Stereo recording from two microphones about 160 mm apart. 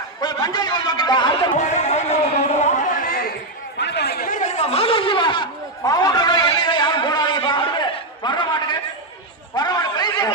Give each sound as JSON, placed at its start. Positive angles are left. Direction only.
{"t": 0.2, "sound": "a man's voice", "side_deg": 25}
{"t": 1.5, "sound": "speech", "side_deg": 45}
{"t": 3.8, "sound": "chatter", "side_deg": 90}
{"t": 9.6, "sound": "a sound", "side_deg": 25}